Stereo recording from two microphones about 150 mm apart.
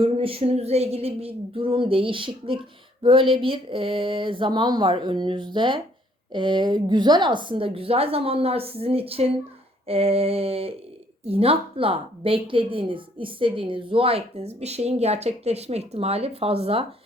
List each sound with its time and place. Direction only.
0.0 s a woman's voice: 40° right (ahead or behind)